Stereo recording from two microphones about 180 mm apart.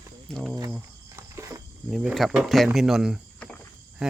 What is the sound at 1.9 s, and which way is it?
Speech, centre (ahead or behind).